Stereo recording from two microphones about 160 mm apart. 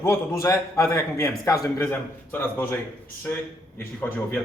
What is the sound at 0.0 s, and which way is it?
A man's voice, 20° left (ahead or behind).